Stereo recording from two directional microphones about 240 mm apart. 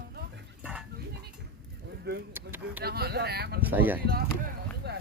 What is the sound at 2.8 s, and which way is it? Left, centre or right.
Speech, right.